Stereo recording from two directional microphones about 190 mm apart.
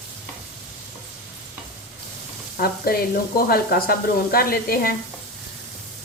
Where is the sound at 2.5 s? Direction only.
50° left (ahead or behind).